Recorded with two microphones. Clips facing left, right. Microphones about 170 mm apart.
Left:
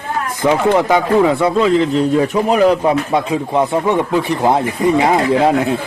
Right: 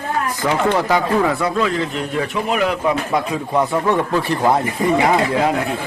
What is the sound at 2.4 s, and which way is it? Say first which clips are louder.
A man's voice: left 4 dB; 35° left (ahead or behind).